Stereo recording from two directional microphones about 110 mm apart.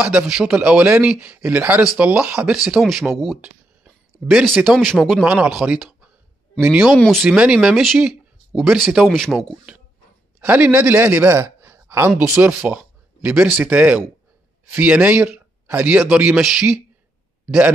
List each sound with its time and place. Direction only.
0.0 s speech: 5° right (ahead or behind)
5.2 s speech: 10° right (ahead or behind)
10.4 s speech: 15° right (ahead or behind)
11.3 s a sound: 25° right (ahead or behind)
12.4 s speech: 15° right (ahead or behind)